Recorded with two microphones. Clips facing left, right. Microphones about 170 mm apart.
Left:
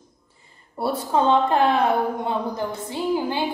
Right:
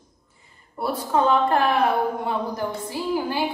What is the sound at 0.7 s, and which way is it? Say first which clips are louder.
A woman's voice: left 1 dB; 25° left (ahead or behind).